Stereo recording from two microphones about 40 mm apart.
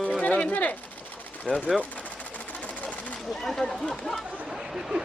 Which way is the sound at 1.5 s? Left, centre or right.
Left.